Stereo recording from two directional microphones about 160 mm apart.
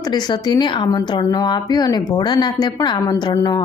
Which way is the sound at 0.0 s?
25° left (ahead or behind).